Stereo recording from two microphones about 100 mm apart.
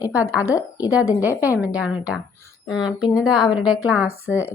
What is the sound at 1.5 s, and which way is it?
Speech, 10° right (ahead or behind).